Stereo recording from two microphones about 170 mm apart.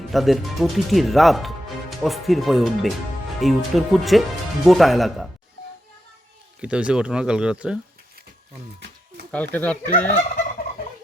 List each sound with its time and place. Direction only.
0.1 s speech: centre (ahead or behind)
6.6 s speech: 5° right (ahead or behind)
9.3 s speech: 10° left (ahead or behind)